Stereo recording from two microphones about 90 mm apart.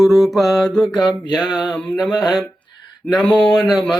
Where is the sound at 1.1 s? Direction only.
55° left (ahead or behind).